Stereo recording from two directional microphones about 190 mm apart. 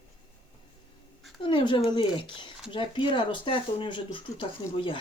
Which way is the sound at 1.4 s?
25° left (ahead or behind).